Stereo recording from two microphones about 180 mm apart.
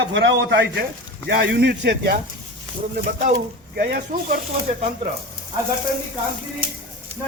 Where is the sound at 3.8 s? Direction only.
55° right (ahead or behind).